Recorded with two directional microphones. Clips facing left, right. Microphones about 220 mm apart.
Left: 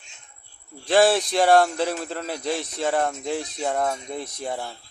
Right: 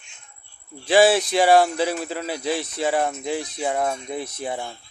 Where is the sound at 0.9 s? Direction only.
Centre (ahead or behind).